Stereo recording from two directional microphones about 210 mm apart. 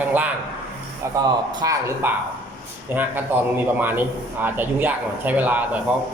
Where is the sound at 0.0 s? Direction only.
10° right (ahead or behind).